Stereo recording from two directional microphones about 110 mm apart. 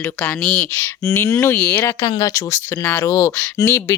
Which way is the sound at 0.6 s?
25° left (ahead or behind).